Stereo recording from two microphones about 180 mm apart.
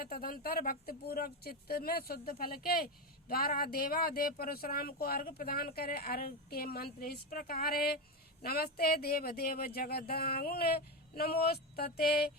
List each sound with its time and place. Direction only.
0.0 s speech: 55° left (ahead or behind)